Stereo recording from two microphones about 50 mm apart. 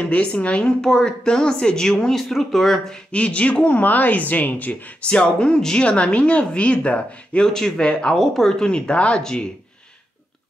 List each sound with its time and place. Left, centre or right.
0.1 s speech: left
0.7 s speech: centre
2.9 s speech: left
7.4 s speech: centre